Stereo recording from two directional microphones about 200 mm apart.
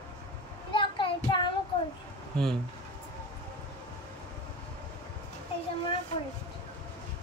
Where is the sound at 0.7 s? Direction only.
25° left (ahead or behind).